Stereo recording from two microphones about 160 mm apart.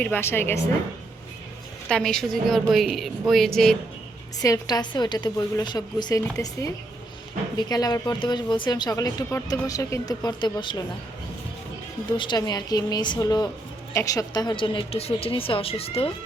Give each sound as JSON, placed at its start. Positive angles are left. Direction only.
{"t": 0.0, "sound": "a woman's voice", "side_deg": 15}
{"t": 1.9, "sound": "a woman's voice", "side_deg": 5}
{"t": 4.4, "sound": "a woman's voice", "side_deg": 20}
{"t": 12.1, "sound": "a woman's voice", "side_deg": 30}